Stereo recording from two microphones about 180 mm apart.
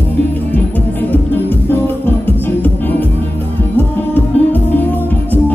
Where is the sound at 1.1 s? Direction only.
10° left (ahead or behind).